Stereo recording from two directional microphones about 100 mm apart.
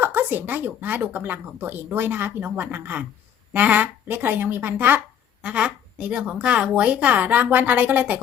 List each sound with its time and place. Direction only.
0.0 s a woman's voice: 20° right (ahead or behind)